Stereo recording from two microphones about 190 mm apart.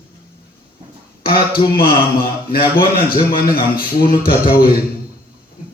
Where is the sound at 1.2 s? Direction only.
50° left (ahead or behind).